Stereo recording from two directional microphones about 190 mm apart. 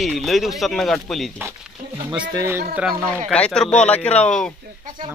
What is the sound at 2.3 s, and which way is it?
Speech, 15° right (ahead or behind).